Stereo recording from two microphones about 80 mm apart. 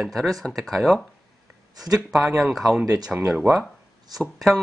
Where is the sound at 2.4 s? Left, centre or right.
Centre.